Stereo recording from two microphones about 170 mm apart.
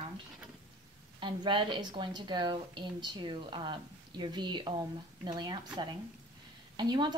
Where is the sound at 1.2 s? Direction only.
30° right (ahead or behind).